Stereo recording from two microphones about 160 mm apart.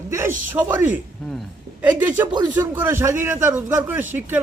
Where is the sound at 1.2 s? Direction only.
5° left (ahead or behind).